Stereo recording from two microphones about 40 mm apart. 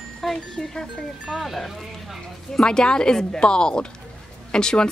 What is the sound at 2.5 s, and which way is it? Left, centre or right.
Speech, centre.